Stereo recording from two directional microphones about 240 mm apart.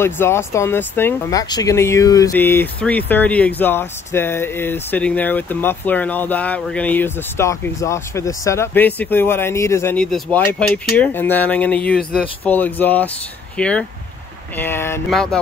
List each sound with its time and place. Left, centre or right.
0.0 s speech: centre